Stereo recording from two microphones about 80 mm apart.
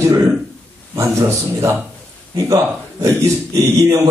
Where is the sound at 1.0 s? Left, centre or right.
Right.